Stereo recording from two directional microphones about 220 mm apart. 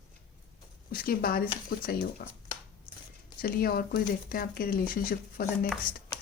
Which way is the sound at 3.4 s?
40° left (ahead or behind).